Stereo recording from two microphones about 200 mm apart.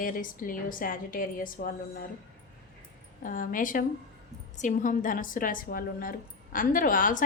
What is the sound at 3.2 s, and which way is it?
A woman's voice, 40° left (ahead or behind).